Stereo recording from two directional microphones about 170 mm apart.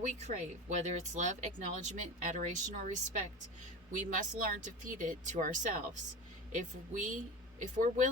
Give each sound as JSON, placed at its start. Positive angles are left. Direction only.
{"t": 0.0, "sound": "speech", "side_deg": -45}